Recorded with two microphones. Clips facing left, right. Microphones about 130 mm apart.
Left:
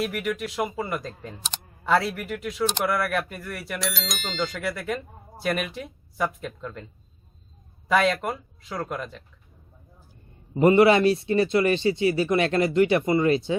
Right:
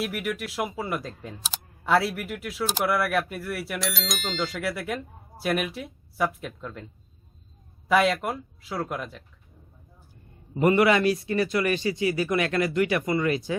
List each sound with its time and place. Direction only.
0.0 s speech: 5° right (ahead or behind)
7.9 s speech: 5° right (ahead or behind)
10.5 s speech: 25° left (ahead or behind)